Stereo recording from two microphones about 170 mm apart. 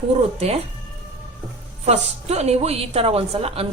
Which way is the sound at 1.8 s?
40° right (ahead or behind).